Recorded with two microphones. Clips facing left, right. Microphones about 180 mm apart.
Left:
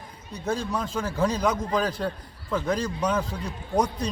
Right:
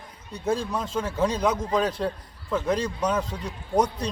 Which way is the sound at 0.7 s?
5° right (ahead or behind).